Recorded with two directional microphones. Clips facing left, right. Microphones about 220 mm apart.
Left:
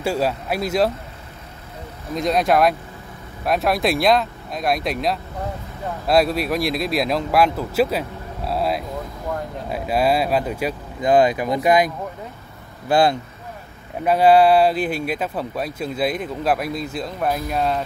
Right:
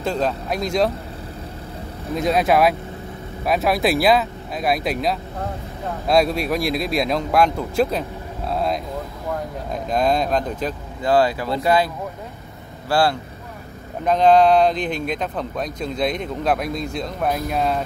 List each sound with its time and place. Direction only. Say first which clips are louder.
0.0 s speech: left 1 dB; 10° left (ahead or behind)
2.1 s speech: even; centre (ahead or behind)
8.5 s a sound: even; 5° left (ahead or behind)
9.7 s speech: left 1 dB; 5° left (ahead or behind)
14.0 s speech: left 1 dB; 10° left (ahead or behind)